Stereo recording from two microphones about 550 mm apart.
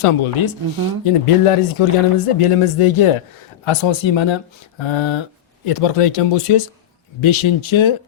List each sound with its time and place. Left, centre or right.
0.0 s speech: left
5.6 s speech: left